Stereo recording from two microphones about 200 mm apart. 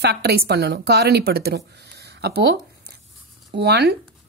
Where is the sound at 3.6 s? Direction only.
55° right (ahead or behind).